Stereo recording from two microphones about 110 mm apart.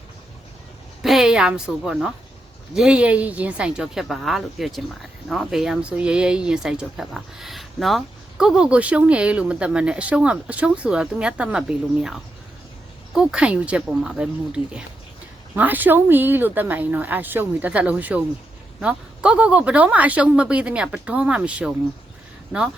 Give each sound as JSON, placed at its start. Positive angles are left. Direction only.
{"t": 1.0, "sound": "a woman's voice", "side_deg": -5}